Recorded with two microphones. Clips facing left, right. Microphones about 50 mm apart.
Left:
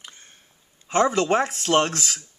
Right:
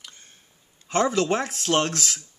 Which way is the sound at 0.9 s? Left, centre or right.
Left.